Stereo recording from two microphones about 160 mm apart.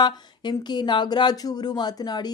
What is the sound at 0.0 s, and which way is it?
Speech, 25° left (ahead or behind).